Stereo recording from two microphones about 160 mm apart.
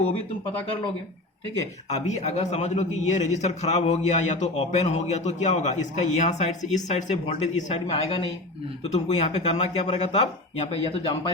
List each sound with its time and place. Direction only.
1.9 s a man's voice: 45° left (ahead or behind)